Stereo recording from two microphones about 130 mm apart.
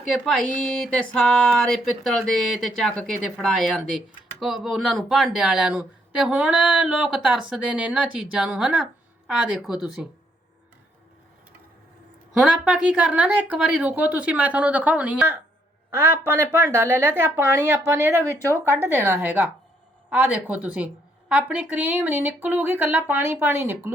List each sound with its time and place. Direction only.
0.1 s a woman's voice: 5° left (ahead or behind)
12.3 s a woman's voice: 5° right (ahead or behind)